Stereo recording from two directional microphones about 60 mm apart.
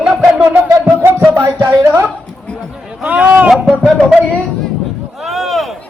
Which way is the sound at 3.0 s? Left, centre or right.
Right.